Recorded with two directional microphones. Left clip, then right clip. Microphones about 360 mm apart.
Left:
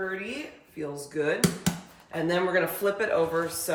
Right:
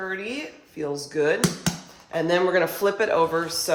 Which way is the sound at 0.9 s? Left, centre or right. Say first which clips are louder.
Right 6 dB; centre.